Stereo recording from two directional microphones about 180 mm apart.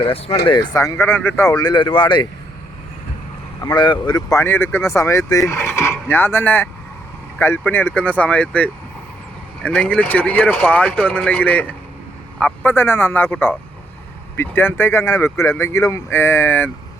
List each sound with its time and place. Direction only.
0.0 s speech: 35° left (ahead or behind)
3.6 s speech: 25° left (ahead or behind)